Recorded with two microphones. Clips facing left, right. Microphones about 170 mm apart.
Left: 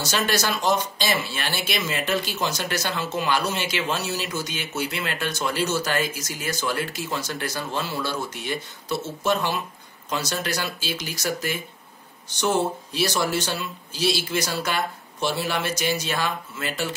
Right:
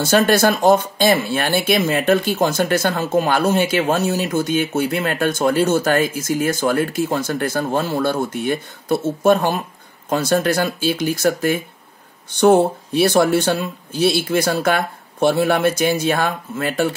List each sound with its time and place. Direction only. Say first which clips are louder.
0.0 s speech: right 10 dB; 50° right (ahead or behind)